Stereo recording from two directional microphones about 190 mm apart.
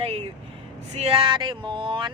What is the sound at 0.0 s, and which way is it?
Speech, 30° right (ahead or behind).